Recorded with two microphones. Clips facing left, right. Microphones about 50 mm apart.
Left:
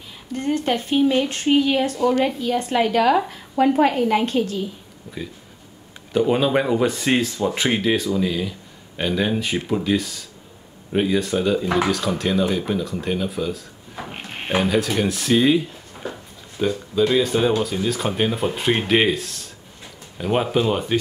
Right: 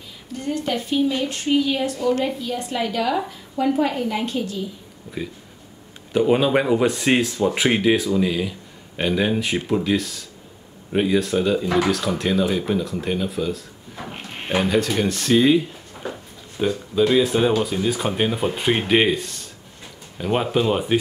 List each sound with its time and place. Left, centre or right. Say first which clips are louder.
0.4 s a woman's voice: left 3 dB; left
2.2 s speech: left 3 dB; left
5.1 s speech: right 2 dB; centre
14.1 s drawer open or close: left 1 dB; centre
14.6 s speech: even; centre